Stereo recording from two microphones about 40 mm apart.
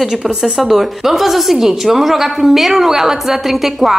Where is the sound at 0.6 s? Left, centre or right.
Centre.